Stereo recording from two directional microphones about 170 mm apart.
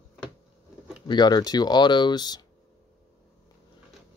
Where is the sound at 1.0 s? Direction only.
25° left (ahead or behind).